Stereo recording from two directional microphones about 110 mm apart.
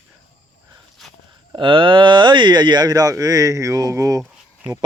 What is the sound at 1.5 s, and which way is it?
Speech, 50° right (ahead or behind).